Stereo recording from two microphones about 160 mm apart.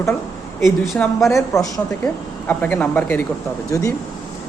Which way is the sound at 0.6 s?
Centre (ahead or behind).